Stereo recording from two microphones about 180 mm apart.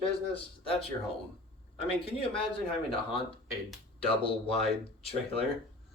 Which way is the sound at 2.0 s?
30° left (ahead or behind).